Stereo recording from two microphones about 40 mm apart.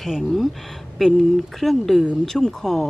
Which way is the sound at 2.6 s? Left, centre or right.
Centre.